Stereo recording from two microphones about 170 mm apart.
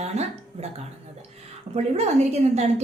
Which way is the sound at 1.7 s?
40° right (ahead or behind).